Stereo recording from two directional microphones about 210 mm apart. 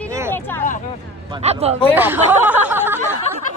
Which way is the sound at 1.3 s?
25° right (ahead or behind).